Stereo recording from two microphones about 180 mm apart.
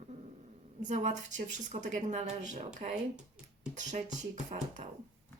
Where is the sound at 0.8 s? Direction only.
45° right (ahead or behind).